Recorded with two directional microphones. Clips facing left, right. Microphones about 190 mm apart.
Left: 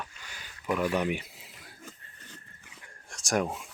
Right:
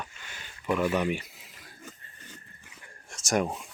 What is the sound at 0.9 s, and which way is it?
Speech, 10° left (ahead or behind).